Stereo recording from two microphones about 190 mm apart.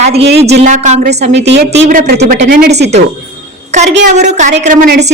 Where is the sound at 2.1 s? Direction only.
55° right (ahead or behind).